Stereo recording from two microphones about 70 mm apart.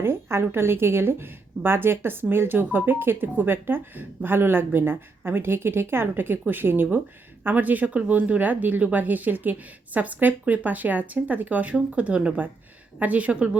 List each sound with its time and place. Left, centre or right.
0.0 s speech: right; by 13.6 s centre